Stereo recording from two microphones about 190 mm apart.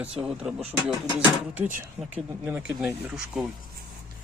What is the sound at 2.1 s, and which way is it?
Speech, 10° right (ahead or behind).